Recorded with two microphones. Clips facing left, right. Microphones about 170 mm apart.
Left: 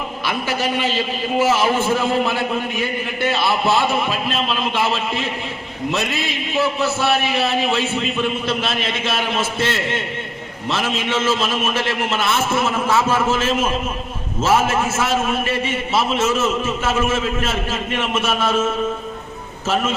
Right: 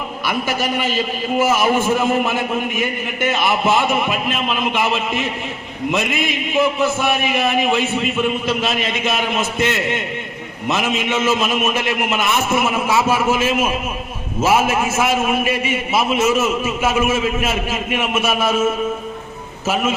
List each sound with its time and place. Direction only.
0.3 s a man's voice: 10° right (ahead or behind)